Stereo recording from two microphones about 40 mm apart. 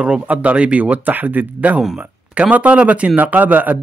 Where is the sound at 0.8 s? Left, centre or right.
Right.